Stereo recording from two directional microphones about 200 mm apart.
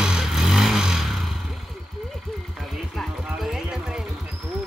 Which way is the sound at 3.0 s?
Centre (ahead or behind).